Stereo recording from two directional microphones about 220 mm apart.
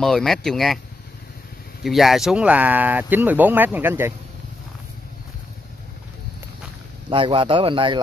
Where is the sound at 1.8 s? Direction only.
Centre (ahead or behind).